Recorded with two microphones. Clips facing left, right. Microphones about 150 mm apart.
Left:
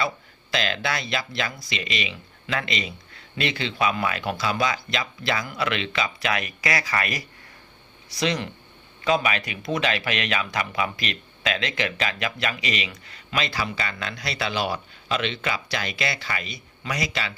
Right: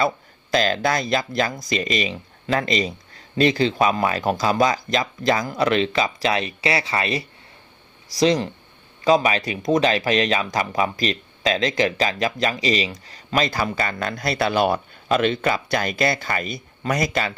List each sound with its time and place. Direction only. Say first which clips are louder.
0.5 s speech: right 7 dB; 40° right (ahead or behind)